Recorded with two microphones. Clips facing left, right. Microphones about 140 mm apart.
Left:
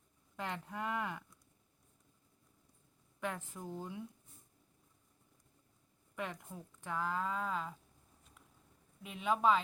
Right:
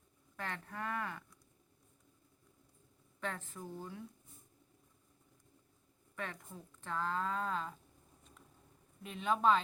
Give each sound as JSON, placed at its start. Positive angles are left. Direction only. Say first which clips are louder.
{"t": 0.3, "sound": "speech", "louder": "left 2 dB", "side_deg": 15}
{"t": 3.2, "sound": "speech", "louder": "left 1 dB", "side_deg": 15}
{"t": 6.1, "sound": "speech", "louder": "left 2 dB", "side_deg": 15}
{"t": 9.0, "sound": "speech", "louder": "even", "side_deg": 5}